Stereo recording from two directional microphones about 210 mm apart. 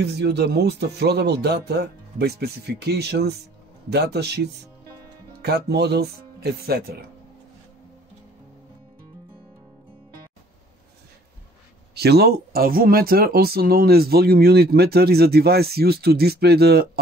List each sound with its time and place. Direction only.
0.2 s speech: 50° right (ahead or behind)
5.4 s speech: 50° right (ahead or behind)
11.9 s speech: 50° right (ahead or behind)